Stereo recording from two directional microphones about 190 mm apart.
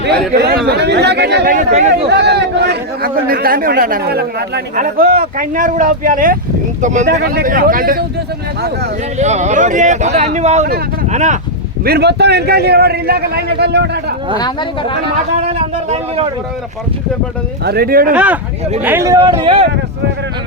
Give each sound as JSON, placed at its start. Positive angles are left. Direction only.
{"t": 0.0, "sound": "a man's voice", "side_deg": -60}
{"t": 1.5, "sound": "speech", "side_deg": -35}
{"t": 2.0, "sound": "a man's voice", "side_deg": -60}
{"t": 7.1, "sound": "speech", "side_deg": -55}
{"t": 9.1, "sound": "speech", "side_deg": -35}
{"t": 11.9, "sound": "a man's voice", "side_deg": -60}
{"t": 14.3, "sound": "speech", "side_deg": 20}
{"t": 15.4, "sound": "speech", "side_deg": -35}
{"t": 17.7, "sound": "speech", "side_deg": -55}
{"t": 18.1, "sound": "speech", "side_deg": -5}